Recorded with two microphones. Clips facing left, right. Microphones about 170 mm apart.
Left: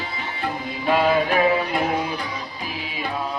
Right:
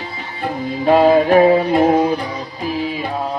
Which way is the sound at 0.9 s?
35° right (ahead or behind).